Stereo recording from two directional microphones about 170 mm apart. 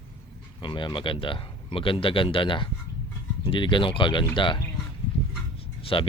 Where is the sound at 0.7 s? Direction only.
30° left (ahead or behind).